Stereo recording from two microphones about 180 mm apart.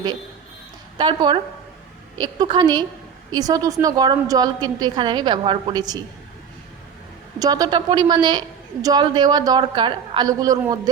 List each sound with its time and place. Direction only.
0.9 s a woman's voice: 25° right (ahead or behind)
7.3 s a woman's voice: 20° right (ahead or behind)